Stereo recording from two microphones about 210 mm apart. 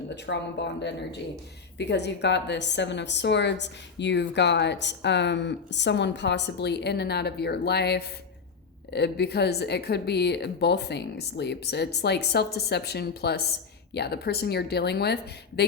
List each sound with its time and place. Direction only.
0.1 s a woman's voice: 55° left (ahead or behind)